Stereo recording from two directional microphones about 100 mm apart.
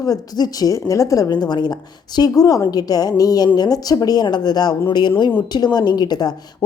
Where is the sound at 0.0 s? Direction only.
40° left (ahead or behind).